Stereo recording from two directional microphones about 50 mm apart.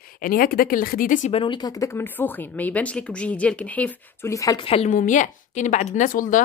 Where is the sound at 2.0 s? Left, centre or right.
Left.